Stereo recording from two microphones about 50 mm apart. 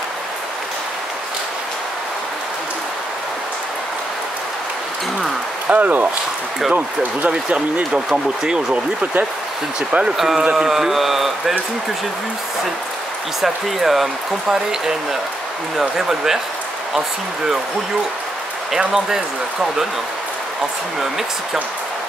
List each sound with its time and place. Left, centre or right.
5.7 s speech: right; by 11.5 s centre
13.4 s speech: centre